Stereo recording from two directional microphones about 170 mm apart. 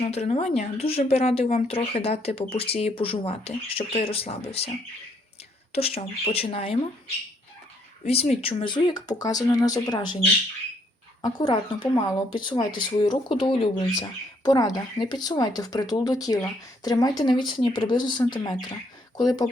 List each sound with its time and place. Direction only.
0.0 s speech: 35° left (ahead or behind)
5.7 s speech: 35° left (ahead or behind)
8.0 s speech: 35° left (ahead or behind)
11.2 s speech: 25° left (ahead or behind)